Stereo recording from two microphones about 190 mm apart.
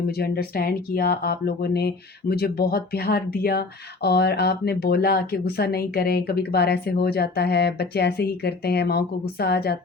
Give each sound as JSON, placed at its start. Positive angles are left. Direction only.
{"t": 0.1, "sound": "speech", "side_deg": 55}